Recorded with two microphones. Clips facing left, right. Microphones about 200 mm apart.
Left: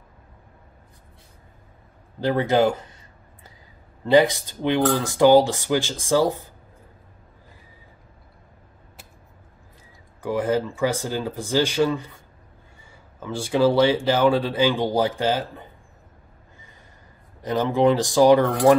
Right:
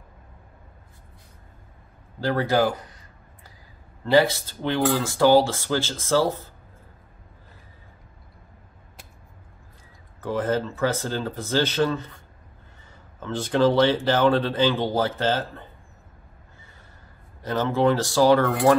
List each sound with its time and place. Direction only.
2.1 s speech: 20° left (ahead or behind)
4.0 s speech: 15° left (ahead or behind)
10.2 s speech: 10° left (ahead or behind)
13.2 s speech: 10° left (ahead or behind)
17.4 s speech: 15° left (ahead or behind)